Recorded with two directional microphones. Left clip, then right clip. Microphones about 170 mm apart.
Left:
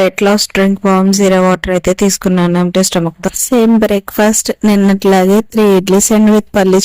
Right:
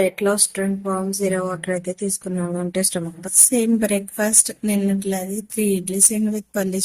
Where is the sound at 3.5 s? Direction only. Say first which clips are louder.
Left 13 dB; 60° left (ahead or behind).